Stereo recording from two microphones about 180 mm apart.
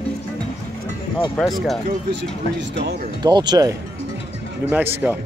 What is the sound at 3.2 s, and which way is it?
Speech, 25° right (ahead or behind).